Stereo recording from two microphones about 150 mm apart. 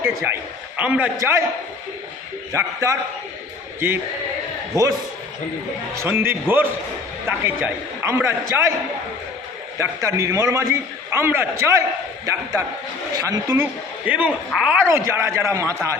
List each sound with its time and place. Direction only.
0.0 s a sound: 15° right (ahead or behind)
0.8 s a man's voice: 10° right (ahead or behind)
1.2 s a man's voice: 20° right (ahead or behind)
2.5 s a man's voice: 20° right (ahead or behind)
4.7 s a man's voice: 20° right (ahead or behind)
9.7 s a man's voice: 20° right (ahead or behind)
14.1 s a man's voice: 10° right (ahead or behind)
14.8 s a man's voice: 15° right (ahead or behind)